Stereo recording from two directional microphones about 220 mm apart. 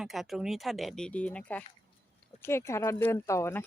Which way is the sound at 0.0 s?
Centre (ahead or behind).